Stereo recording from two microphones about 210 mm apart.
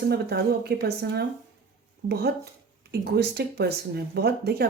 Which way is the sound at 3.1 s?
50° right (ahead or behind).